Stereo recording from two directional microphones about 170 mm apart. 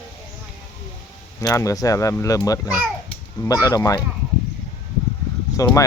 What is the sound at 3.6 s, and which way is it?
Speech, 20° left (ahead or behind).